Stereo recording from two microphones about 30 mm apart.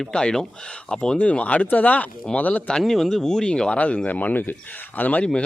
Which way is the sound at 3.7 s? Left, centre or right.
Left.